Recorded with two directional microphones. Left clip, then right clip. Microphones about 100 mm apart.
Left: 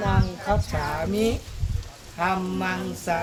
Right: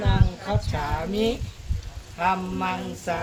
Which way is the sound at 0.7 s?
15° left (ahead or behind).